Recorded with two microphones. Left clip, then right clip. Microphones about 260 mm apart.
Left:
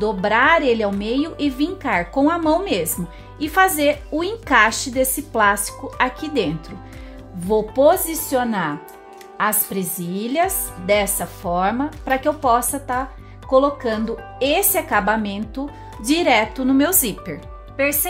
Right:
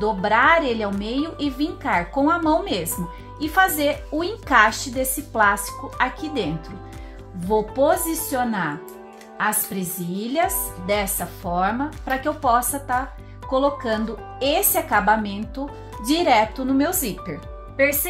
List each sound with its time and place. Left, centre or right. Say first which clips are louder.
0.0 s a woman's voice: left 1 dB; left